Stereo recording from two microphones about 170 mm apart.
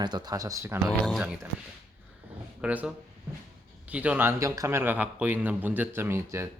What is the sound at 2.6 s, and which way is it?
A man's voice, 10° right (ahead or behind).